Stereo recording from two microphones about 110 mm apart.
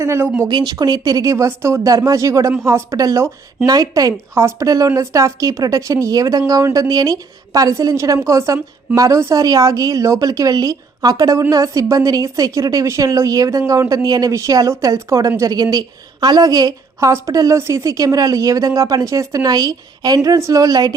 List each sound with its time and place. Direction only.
0.0 s speech: 20° right (ahead or behind)
0.4 s speech: 40° right (ahead or behind)